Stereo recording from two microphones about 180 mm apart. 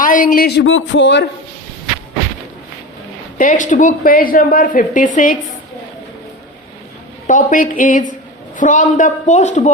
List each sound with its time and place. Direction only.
0.0 s speech: 50° left (ahead or behind); by 1.2 s 90° left
3.3 s speech: 50° left (ahead or behind)
7.3 s speech: 45° left (ahead or behind)